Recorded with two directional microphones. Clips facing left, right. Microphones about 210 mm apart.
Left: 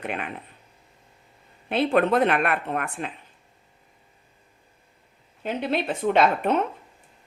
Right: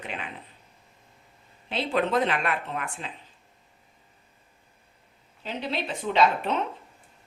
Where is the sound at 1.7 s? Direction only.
55° left (ahead or behind).